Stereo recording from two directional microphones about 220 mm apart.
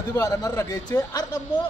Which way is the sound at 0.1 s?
15° left (ahead or behind).